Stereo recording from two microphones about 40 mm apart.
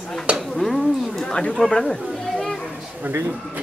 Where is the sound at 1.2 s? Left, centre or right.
Left.